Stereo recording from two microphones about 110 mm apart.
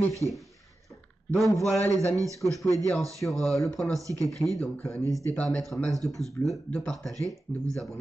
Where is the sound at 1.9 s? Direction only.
30° right (ahead or behind).